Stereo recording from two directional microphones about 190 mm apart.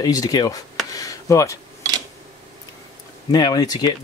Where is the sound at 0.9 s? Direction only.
20° left (ahead or behind).